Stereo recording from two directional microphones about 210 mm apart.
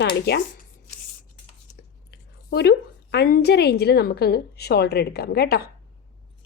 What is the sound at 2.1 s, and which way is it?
A woman's voice, 50° left (ahead or behind).